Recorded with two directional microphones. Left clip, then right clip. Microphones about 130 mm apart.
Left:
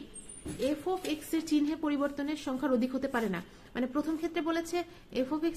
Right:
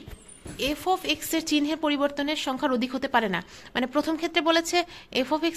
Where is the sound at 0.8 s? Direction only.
40° right (ahead or behind).